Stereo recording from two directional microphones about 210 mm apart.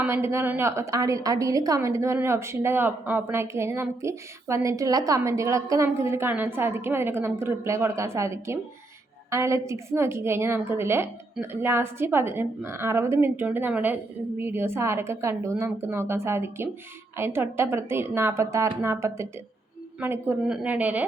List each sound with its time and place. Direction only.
0.0 s a woman's voice: 10° right (ahead or behind)